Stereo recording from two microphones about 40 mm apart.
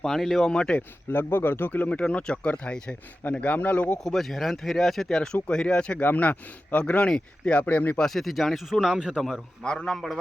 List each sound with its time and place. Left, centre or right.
0.0 s speech: centre
0.5 s speech: left
0.8 s speech: left
1.9 s speech: left
3.4 s speech: left
4.0 s speech: centre; by 6.0 s left
6.0 s speech: left
8.0 s speech: centre
8.9 s a man's voice: centre
9.8 s speech: centre